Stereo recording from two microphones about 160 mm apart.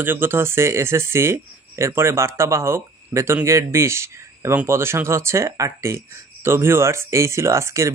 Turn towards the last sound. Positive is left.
turn(degrees=-20)  # may be behind; listen again after turning